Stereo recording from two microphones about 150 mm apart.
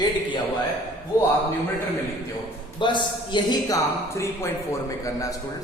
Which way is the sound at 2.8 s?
30° left (ahead or behind).